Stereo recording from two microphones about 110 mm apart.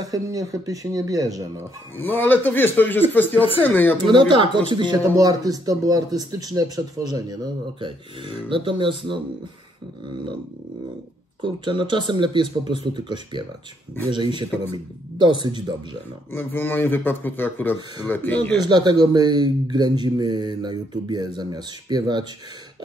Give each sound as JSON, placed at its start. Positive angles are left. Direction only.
{"t": 0.0, "sound": "speech", "side_deg": -35}
{"t": 2.0, "sound": "a man's voice", "side_deg": 20}
{"t": 4.1, "sound": "speech", "side_deg": -45}
{"t": 4.9, "sound": "speech", "side_deg": -35}
{"t": 7.8, "sound": "speech", "side_deg": -50}
{"t": 11.4, "sound": "speech", "side_deg": -45}
{"t": 16.3, "sound": "a man's voice", "side_deg": 20}
{"t": 18.6, "sound": "speech", "side_deg": -40}